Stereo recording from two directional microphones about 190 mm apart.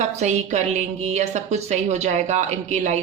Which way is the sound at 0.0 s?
40° right (ahead or behind).